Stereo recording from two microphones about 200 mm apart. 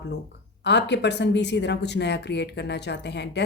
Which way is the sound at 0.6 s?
60° left (ahead or behind).